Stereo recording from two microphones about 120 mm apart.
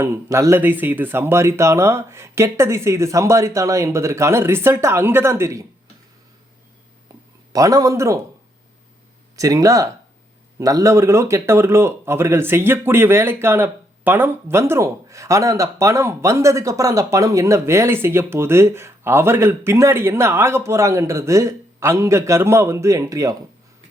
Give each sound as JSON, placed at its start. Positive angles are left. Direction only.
{"t": 0.0, "sound": "speech", "side_deg": -20}
{"t": 7.5, "sound": "speech", "side_deg": -30}
{"t": 9.3, "sound": "speech", "side_deg": -30}